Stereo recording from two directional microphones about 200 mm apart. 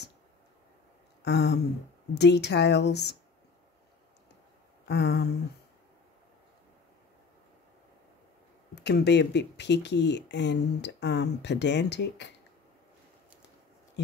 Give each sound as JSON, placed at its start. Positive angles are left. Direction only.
{"t": 1.2, "sound": "a sound", "side_deg": 60}
{"t": 2.1, "sound": "speech", "side_deg": 55}
{"t": 4.8, "sound": "speech", "side_deg": 60}
{"t": 8.7, "sound": "speech", "side_deg": 60}